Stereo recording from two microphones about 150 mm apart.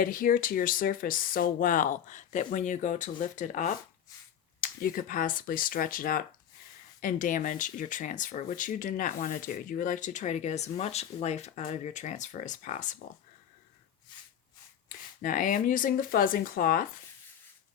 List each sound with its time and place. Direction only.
0.0 s speech: 65° left (ahead or behind)
4.6 s speech: 70° left (ahead or behind); by 13.0 s 55° left (ahead or behind)
15.2 s speech: 60° left (ahead or behind)